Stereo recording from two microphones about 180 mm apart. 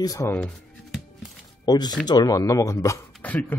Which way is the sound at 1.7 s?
20° left (ahead or behind).